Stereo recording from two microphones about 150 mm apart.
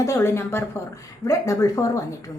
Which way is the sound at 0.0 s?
20° left (ahead or behind).